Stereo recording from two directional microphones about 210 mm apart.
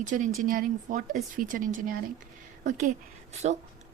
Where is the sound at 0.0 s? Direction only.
35° right (ahead or behind).